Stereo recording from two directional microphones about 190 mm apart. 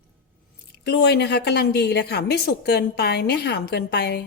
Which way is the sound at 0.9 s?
60° left (ahead or behind).